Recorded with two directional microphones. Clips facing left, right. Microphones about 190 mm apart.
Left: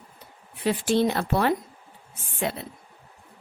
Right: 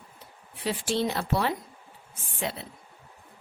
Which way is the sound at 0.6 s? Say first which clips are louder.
Left 5 dB; 55° left (ahead or behind).